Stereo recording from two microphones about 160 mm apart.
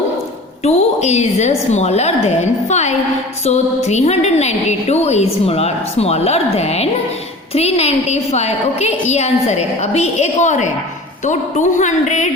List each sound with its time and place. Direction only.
0.6 s a woman's voice: 45° left (ahead or behind)